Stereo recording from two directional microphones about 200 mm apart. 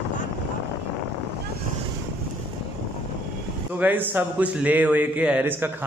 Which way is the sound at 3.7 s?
10° right (ahead or behind).